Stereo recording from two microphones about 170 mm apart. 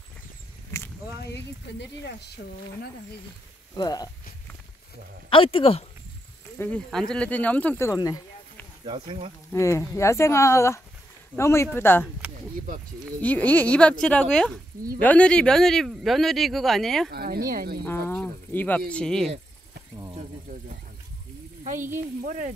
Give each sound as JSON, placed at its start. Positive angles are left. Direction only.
{"t": 1.2, "sound": "speech", "side_deg": 90}
{"t": 3.7, "sound": "speech", "side_deg": 20}
{"t": 5.3, "sound": "speech", "side_deg": 30}
{"t": 6.6, "sound": "speech", "side_deg": 5}
{"t": 8.8, "sound": "speech", "side_deg": -30}
{"t": 9.5, "sound": "speech", "side_deg": 15}
{"t": 13.2, "sound": "speech", "side_deg": 10}
{"t": 17.1, "sound": "speech", "side_deg": -60}
{"t": 17.8, "sound": "speech", "side_deg": 10}
{"t": 21.9, "sound": "speech", "side_deg": -55}